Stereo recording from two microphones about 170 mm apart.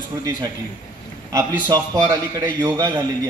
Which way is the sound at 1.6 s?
25° right (ahead or behind).